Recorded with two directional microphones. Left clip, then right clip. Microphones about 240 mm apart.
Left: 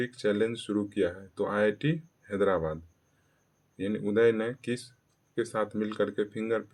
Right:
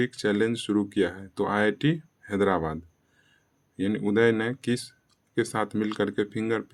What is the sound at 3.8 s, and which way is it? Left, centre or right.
Speech, right.